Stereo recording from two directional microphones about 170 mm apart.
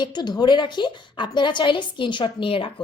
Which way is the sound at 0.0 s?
25° left (ahead or behind).